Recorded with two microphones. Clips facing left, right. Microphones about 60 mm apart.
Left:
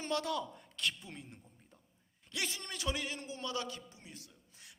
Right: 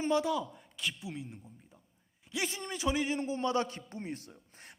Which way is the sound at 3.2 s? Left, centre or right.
Right.